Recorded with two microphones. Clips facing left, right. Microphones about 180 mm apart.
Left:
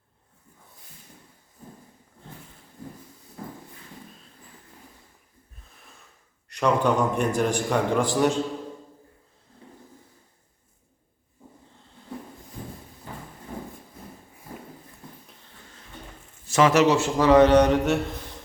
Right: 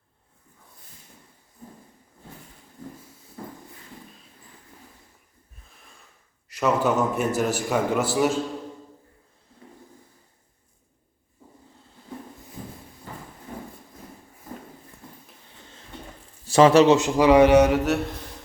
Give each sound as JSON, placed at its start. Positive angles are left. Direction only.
{"t": 6.5, "sound": "a man's voice", "side_deg": -5}
{"t": 16.5, "sound": "speech", "side_deg": -30}
{"t": 17.2, "sound": "mantra", "side_deg": -10}